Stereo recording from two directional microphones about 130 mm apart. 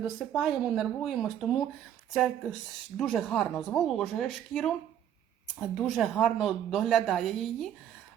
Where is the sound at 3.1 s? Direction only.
5° left (ahead or behind).